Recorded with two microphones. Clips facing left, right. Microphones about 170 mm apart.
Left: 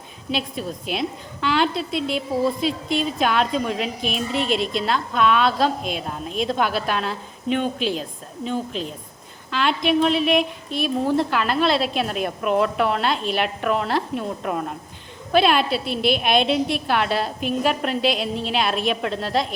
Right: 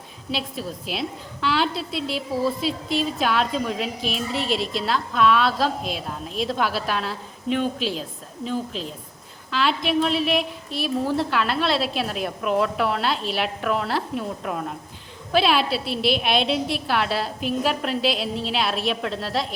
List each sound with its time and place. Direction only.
0.3 s a woman's voice: centre (ahead or behind)
1.9 s a woman's voice: 55° left (ahead or behind)
2.6 s a woman's voice: centre (ahead or behind)
9.5 s a woman's voice: centre (ahead or behind)
15.8 s a woman's voice: 50° left (ahead or behind)
16.5 s a woman's voice: centre (ahead or behind)